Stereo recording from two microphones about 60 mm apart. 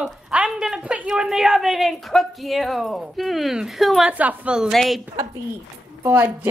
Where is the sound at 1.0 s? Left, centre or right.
Centre.